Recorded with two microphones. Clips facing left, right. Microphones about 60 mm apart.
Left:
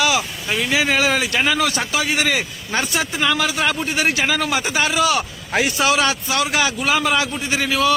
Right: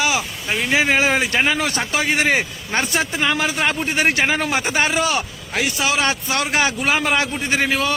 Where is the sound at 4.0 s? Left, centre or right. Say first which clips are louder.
Right 2 dB; right.